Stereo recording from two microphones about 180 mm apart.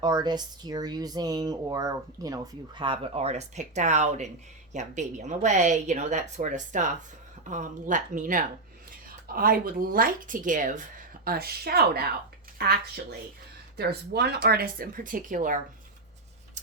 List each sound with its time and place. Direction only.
0.0 s speech: 25° right (ahead or behind); by 15.6 s 45° right (ahead or behind)